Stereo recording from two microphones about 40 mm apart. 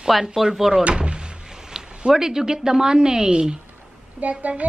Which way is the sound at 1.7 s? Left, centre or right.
Centre.